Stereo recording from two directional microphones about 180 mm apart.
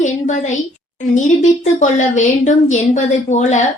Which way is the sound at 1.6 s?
40° left (ahead or behind).